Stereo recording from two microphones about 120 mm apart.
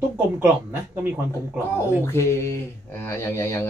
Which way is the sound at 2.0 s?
20° left (ahead or behind).